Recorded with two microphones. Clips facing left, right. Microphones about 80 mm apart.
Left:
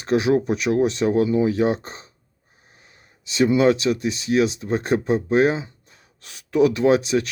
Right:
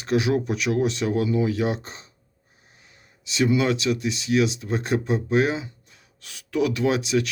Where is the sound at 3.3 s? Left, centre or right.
Left.